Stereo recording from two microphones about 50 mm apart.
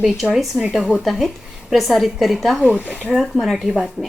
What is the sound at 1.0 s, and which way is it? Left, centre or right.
A woman's voice, centre.